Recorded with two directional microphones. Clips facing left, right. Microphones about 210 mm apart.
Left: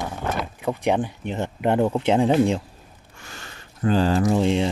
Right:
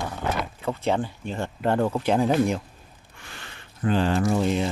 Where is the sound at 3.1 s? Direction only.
45° left (ahead or behind).